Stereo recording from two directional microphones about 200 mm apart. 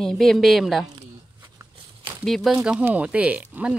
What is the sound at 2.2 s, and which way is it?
Speech, centre (ahead or behind).